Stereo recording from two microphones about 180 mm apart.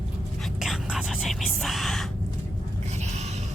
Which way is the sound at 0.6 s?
Centre (ahead or behind).